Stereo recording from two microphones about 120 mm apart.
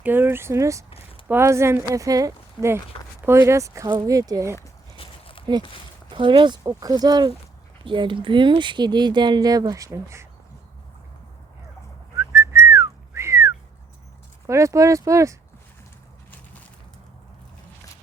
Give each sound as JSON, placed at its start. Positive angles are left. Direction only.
{"t": 0.0, "sound": "speech", "side_deg": -15}
{"t": 4.9, "sound": "a sound", "side_deg": 50}
{"t": 6.1, "sound": "speech", "side_deg": -45}
{"t": 7.9, "sound": "speech", "side_deg": -45}
{"t": 12.1, "sound": "whistling", "side_deg": -20}
{"t": 14.4, "sound": "speech", "side_deg": -25}